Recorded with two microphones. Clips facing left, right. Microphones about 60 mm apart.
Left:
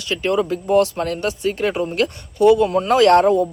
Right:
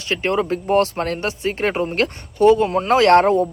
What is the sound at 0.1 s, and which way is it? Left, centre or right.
Speech, right.